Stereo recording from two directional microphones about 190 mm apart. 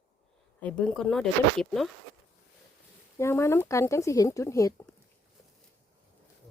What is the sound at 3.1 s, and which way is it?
Speech, 15° left (ahead or behind).